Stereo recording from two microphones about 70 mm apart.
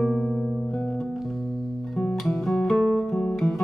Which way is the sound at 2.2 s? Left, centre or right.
Centre.